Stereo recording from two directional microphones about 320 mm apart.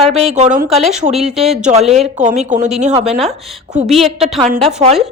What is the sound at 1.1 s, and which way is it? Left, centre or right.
Speech, centre.